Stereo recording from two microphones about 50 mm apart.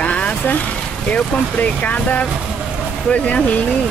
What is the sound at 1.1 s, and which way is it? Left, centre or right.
Speech, left.